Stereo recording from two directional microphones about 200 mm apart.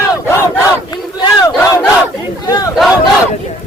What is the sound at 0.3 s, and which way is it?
Battle cry, 15° left (ahead or behind).